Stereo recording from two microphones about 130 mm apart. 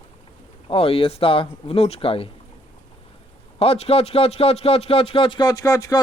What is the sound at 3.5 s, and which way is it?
A man's voice, 50° left (ahead or behind).